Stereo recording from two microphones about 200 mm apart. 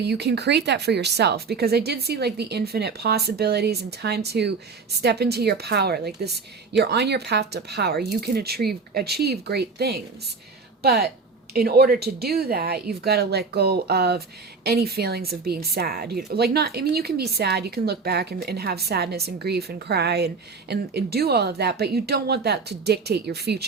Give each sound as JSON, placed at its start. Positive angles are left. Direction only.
{"t": 0.0, "sound": "a woman's voice", "side_deg": -55}